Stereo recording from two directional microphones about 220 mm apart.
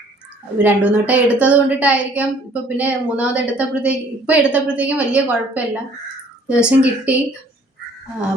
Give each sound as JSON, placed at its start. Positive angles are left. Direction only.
{"t": 0.6, "sound": "a woman's voice", "side_deg": -5}